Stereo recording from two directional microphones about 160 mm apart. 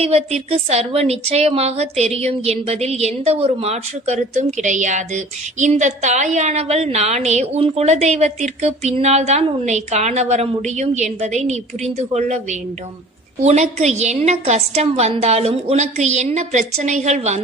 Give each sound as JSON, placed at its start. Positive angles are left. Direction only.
{"t": 0.0, "sound": "a woman's voice", "side_deg": -40}